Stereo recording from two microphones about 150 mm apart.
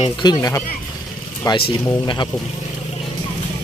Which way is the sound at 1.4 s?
30° left (ahead or behind).